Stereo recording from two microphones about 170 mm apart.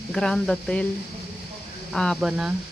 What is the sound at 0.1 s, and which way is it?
Speech, 5° left (ahead or behind).